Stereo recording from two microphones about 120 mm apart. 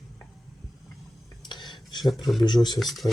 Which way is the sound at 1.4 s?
40° left (ahead or behind).